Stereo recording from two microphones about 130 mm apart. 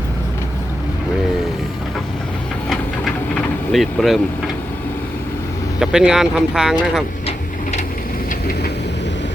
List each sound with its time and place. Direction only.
2.6 s vehicle: centre (ahead or behind)
5.8 s speech: 5° right (ahead or behind)
7.3 s printer: 55° left (ahead or behind)